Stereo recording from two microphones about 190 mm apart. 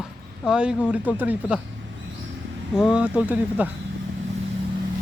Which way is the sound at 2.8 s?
5° right (ahead or behind).